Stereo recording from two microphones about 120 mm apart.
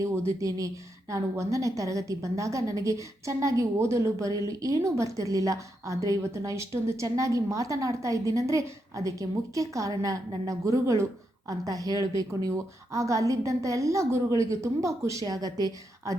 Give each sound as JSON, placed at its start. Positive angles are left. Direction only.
{"t": 0.0, "sound": "a woman's voice", "side_deg": -25}